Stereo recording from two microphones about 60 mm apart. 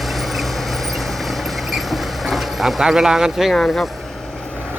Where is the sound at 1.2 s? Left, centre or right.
Centre.